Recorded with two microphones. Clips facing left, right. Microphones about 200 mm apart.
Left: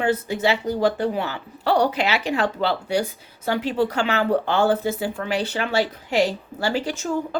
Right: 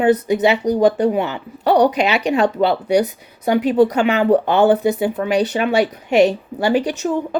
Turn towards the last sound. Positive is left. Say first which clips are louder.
# right 6 dB
turn(degrees=-20)  # may be behind; listen again after turning